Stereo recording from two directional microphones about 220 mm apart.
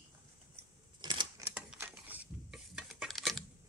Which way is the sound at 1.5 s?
5° right (ahead or behind).